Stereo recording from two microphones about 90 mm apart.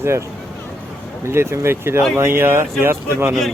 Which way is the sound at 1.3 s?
30° right (ahead or behind).